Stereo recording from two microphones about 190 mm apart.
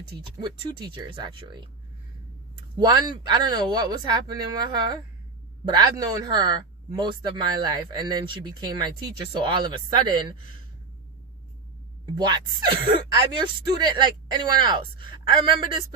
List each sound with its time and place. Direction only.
0.2 s speech: 25° right (ahead or behind)
2.7 s speech: 20° right (ahead or behind)
12.1 s speech: 25° right (ahead or behind)